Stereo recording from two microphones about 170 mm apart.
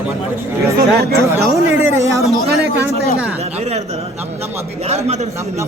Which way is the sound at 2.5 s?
85° right.